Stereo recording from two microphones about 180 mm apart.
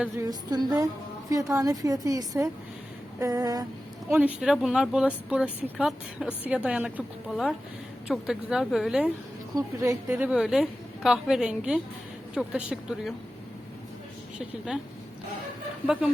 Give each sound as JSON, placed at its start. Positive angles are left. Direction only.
{"t": 0.3, "sound": "a woman's voice", "side_deg": -20}
{"t": 4.1, "sound": "a woman's voice", "side_deg": -5}
{"t": 9.6, "sound": "a woman's voice", "side_deg": -15}
{"t": 14.3, "sound": "a woman's voice", "side_deg": -5}